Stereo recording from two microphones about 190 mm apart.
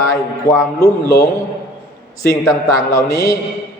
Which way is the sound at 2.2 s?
20° left (ahead or behind).